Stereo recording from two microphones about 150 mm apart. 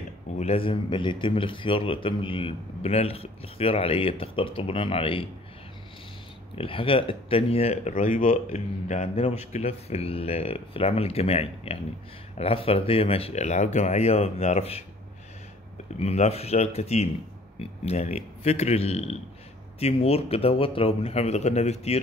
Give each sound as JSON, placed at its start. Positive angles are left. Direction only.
{"t": 0.4, "sound": "a man's voice", "side_deg": 40}
{"t": 6.5, "sound": "a man's voice", "side_deg": 35}
{"t": 7.9, "sound": "speech", "side_deg": 60}
{"t": 8.5, "sound": "a man's voice", "side_deg": 50}
{"t": 16.0, "sound": "speech", "side_deg": 45}